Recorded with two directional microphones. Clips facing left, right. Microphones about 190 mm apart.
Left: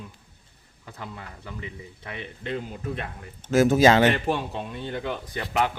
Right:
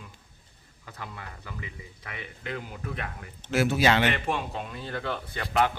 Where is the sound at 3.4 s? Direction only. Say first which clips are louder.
Left 6 dB; 45° left (ahead or behind).